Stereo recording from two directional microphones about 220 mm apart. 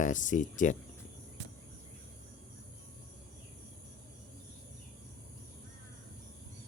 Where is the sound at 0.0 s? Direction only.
35° left (ahead or behind).